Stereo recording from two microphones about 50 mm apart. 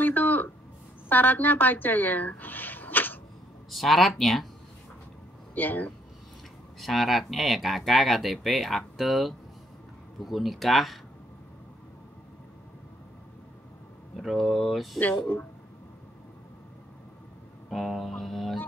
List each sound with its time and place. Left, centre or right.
0.0 s a sound: left
1.0 s speech: left
3.7 s speech: centre
5.5 s speech: left
6.8 s speech: centre
14.1 s speech: centre
15.0 s speech: left
17.6 s speech: centre